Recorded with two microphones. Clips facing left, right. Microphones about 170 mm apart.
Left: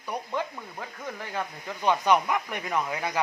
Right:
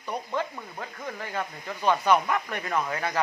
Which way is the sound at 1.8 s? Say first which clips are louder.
Even; 15° left (ahead or behind).